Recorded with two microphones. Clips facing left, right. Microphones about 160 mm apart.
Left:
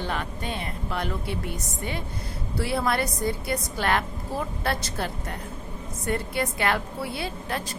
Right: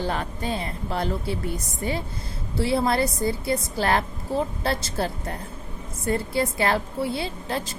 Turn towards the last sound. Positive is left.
turn(degrees=-30)  # may be behind; listen again after turning